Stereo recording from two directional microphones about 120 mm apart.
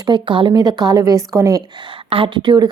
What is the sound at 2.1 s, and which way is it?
Speech, 45° right (ahead or behind).